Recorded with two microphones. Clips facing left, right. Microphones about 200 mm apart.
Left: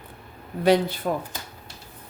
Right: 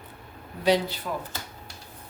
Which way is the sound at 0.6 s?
55° left (ahead or behind).